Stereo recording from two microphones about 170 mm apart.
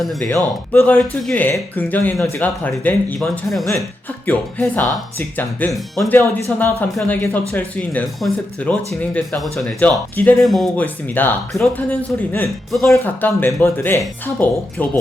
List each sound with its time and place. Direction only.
0.3 s speech: 10° left (ahead or behind)